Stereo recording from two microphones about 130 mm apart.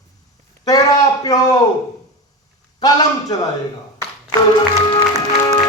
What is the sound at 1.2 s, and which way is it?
Speech, 30° left (ahead or behind).